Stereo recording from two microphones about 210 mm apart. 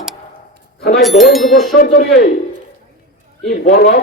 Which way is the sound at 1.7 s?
40° left (ahead or behind).